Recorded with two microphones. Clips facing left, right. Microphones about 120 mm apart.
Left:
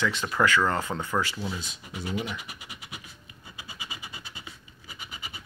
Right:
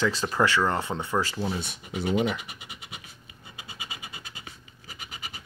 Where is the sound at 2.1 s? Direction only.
55° right (ahead or behind).